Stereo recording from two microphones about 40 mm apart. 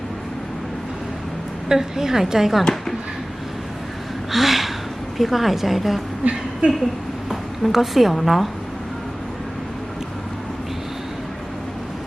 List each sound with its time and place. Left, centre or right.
1.7 s a woman's voice: centre
4.3 s a sound: centre
5.1 s speech: centre
6.2 s a woman's voice: right
7.7 s speech: centre